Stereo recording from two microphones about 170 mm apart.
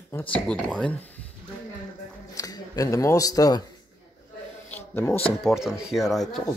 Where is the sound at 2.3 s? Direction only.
20° left (ahead or behind).